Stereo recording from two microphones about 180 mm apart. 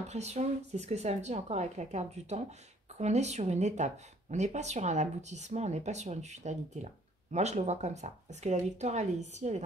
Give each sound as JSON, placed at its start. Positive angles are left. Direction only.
{"t": 0.1, "sound": "speech", "side_deg": -40}